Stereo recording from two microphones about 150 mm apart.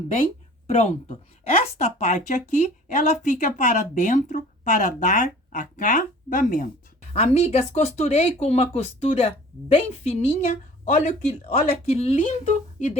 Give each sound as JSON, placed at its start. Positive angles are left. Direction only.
{"t": 0.7, "sound": "a woman's voice", "side_deg": 45}
{"t": 7.1, "sound": "speech", "side_deg": 45}
{"t": 12.1, "sound": "speech", "side_deg": 55}